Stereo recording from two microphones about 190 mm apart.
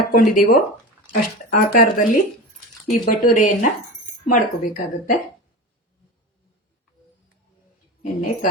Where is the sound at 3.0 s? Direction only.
45° left (ahead or behind).